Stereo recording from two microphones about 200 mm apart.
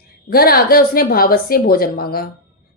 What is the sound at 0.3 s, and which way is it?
Speech, 50° left (ahead or behind).